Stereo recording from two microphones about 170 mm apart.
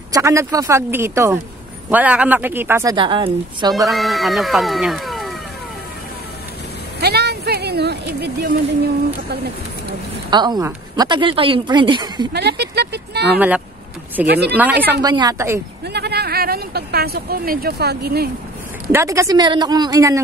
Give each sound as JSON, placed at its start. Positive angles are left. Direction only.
{"t": 0.1, "sound": "a woman's voice", "side_deg": -20}
{"t": 3.9, "sound": "speech", "side_deg": 0}
{"t": 7.0, "sound": "a sound", "side_deg": -70}
{"t": 10.3, "sound": "speech", "side_deg": -25}
{"t": 12.3, "sound": "speech", "side_deg": -75}
{"t": 14.6, "sound": "a woman's voice", "side_deg": -10}
{"t": 15.0, "sound": "speech", "side_deg": -25}
{"t": 15.8, "sound": "a sound", "side_deg": -75}
{"t": 18.9, "sound": "speech", "side_deg": -15}